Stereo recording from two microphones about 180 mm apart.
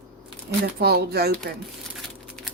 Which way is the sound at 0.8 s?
65° right (ahead or behind).